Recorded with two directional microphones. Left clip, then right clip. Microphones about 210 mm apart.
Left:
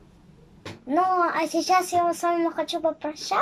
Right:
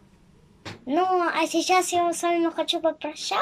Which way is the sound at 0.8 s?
Centre (ahead or behind).